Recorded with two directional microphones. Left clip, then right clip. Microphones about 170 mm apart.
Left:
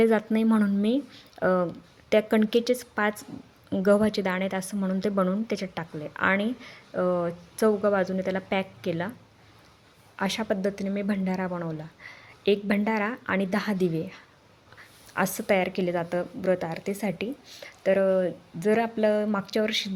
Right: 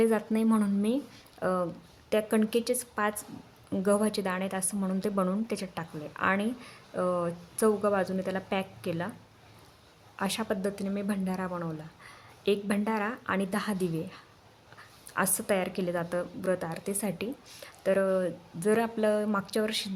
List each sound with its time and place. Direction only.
0.0 s a woman's voice: 15° left (ahead or behind)
10.2 s a woman's voice: 10° left (ahead or behind)